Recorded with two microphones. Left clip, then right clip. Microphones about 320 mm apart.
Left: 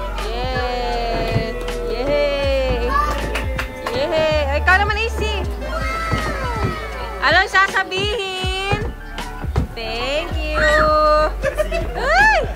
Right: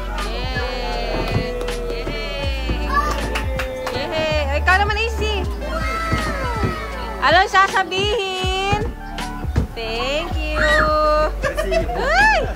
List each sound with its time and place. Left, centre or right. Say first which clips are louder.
0.6 s music: left 3 dB; centre
2.0 s music: left 9 dB; centre
3.9 s music: left 5 dB; centre
9.9 s a sound: even; centre
12.0 s music: left 2 dB; centre